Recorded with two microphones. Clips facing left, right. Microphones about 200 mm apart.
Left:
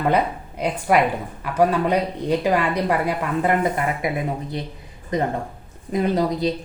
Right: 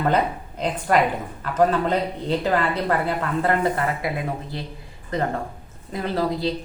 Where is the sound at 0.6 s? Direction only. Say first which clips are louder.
Left 1 dB; 10° left (ahead or behind).